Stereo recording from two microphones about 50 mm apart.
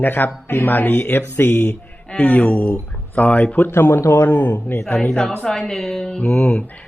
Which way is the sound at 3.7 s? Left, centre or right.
Left.